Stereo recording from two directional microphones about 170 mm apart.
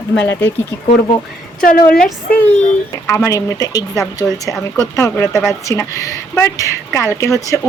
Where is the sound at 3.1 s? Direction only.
20° left (ahead or behind).